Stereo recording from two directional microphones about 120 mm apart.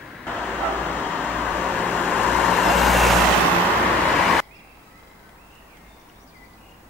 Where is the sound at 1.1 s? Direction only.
15° left (ahead or behind).